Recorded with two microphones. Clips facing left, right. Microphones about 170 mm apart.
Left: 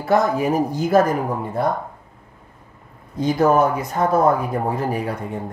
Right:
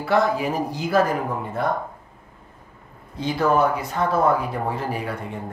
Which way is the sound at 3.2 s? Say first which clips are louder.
Left 4 dB; 45° left (ahead or behind).